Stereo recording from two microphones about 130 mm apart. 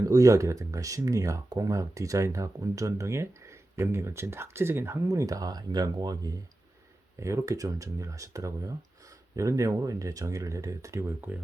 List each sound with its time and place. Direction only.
0.0 s speech: 25° right (ahead or behind)